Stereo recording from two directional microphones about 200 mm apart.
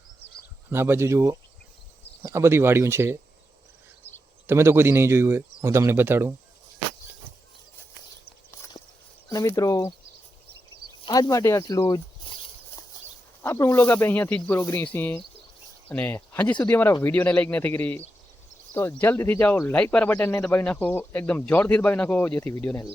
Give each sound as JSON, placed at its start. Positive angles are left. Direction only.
{"t": 0.7, "sound": "a man's voice", "side_deg": -10}
{"t": 4.4, "sound": "a man's voice", "side_deg": -10}
{"t": 9.3, "sound": "speech", "side_deg": 15}
{"t": 11.0, "sound": "speech", "side_deg": 20}
{"t": 13.4, "sound": "speech", "side_deg": 15}